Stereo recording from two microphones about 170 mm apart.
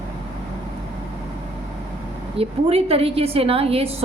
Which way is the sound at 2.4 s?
35° right (ahead or behind).